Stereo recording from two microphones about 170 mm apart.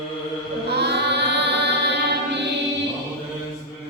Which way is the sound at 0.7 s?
80° right.